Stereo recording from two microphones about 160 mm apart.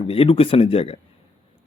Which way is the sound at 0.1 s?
35° left (ahead or behind).